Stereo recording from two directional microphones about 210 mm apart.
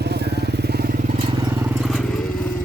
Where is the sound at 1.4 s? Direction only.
10° right (ahead or behind).